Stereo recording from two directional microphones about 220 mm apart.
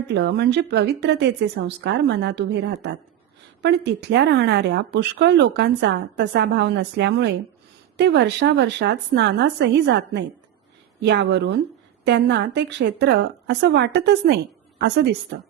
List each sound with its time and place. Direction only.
0.1 s a woman's voice: 50° right (ahead or behind)